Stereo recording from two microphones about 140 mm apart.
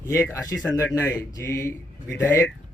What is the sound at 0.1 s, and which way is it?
Speech, 20° left (ahead or behind).